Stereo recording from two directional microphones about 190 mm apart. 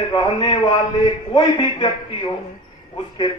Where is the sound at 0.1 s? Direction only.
25° left (ahead or behind).